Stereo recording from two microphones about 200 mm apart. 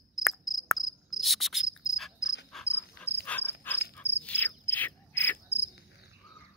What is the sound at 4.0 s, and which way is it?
Cricket, 10° left (ahead or behind).